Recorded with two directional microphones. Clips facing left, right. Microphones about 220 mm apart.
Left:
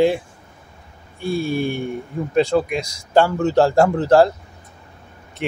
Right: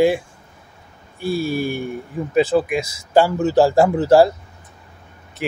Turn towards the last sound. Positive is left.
turn(degrees=0)  # may be behind; listen again after turning